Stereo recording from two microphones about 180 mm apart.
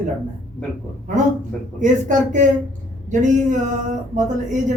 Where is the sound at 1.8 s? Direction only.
45° right (ahead or behind).